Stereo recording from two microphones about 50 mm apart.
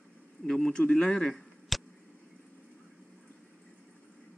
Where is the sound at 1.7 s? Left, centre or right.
Centre.